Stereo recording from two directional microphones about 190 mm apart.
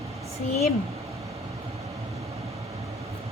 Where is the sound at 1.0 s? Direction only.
15° right (ahead or behind).